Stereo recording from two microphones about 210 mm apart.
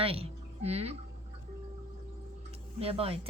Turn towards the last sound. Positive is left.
turn(degrees=-25)  # may be behind; listen again after turning